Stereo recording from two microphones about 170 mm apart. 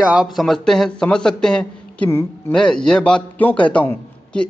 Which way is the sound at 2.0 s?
15° left (ahead or behind).